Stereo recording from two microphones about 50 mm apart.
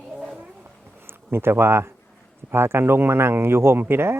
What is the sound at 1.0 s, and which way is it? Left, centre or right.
Speech, right.